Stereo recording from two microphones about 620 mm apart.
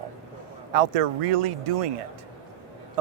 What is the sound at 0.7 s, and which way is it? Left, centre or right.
Speech, right.